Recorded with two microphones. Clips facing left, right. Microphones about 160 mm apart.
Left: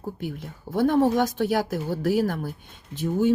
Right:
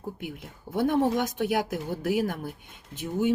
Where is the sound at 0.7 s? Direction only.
40° left (ahead or behind).